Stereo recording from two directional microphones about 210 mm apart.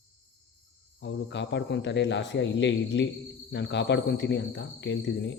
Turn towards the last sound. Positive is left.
turn(degrees=55)  # may be behind; listen again after turning